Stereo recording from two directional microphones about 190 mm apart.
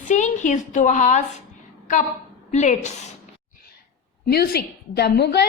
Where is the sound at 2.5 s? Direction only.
40° left (ahead or behind).